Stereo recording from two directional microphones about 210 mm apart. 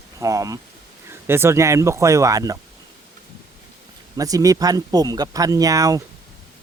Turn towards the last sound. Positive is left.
turn(degrees=-15)  # may be behind; listen again after turning